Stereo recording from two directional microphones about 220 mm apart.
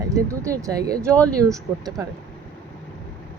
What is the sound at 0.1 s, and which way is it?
Speech, 15° right (ahead or behind).